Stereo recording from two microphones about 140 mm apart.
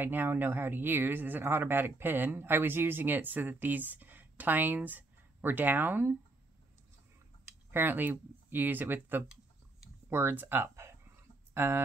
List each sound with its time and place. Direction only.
0.0 s speech: 15° right (ahead or behind)
7.7 s speech: 15° right (ahead or behind)